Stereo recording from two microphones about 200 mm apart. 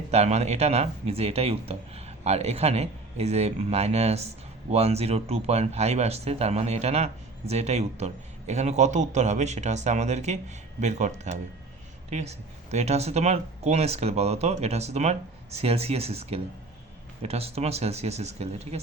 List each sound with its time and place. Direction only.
0.1 s speech: 35° right (ahead or behind)